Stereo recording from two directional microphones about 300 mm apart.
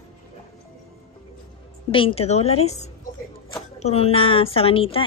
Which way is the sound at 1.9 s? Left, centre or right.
Centre.